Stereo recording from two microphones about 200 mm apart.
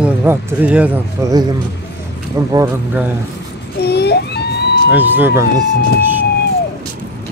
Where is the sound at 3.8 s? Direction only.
55° left (ahead or behind).